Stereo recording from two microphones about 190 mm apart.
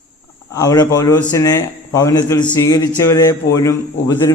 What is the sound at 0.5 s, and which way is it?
A man's voice, 20° left (ahead or behind).